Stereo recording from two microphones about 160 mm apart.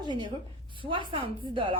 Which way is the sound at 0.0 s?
30° right (ahead or behind).